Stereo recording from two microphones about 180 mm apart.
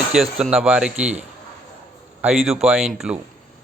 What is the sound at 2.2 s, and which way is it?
Speech, centre (ahead or behind).